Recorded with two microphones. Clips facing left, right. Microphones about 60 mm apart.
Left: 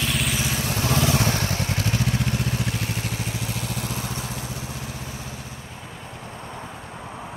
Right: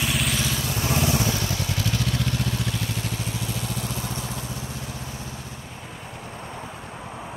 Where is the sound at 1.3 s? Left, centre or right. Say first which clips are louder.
Left 2 dB; left.